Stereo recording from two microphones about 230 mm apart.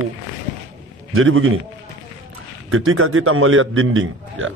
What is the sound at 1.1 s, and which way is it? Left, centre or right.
Speech, right.